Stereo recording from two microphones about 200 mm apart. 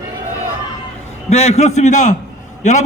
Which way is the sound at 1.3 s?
35° left (ahead or behind).